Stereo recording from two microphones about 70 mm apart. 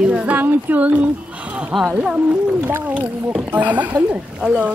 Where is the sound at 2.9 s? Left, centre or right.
Right.